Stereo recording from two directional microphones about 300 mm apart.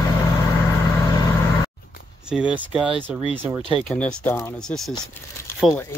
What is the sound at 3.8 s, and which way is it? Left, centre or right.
Speech, centre.